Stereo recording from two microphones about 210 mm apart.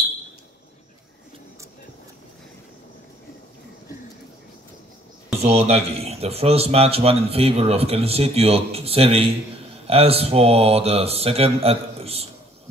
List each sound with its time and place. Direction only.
5.4 s speech: 30° right (ahead or behind)